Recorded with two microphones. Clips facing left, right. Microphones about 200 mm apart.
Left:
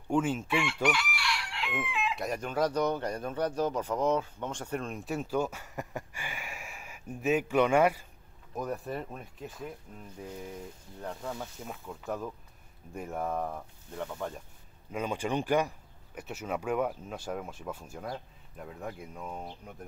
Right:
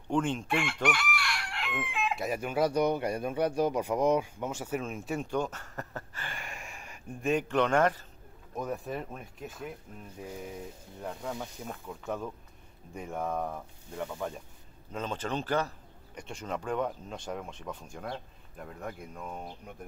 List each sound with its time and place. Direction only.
0.1 s speech: 5° left (ahead or behind)
0.8 s chicken: 50° right (ahead or behind)
2.1 s speech: 5° right (ahead or behind)
8.5 s speech: centre (ahead or behind)
11.0 s speech: centre (ahead or behind)
14.9 s speech: 10° left (ahead or behind)